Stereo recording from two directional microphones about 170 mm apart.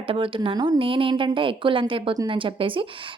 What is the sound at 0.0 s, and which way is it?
A woman's voice, 30° right (ahead or behind).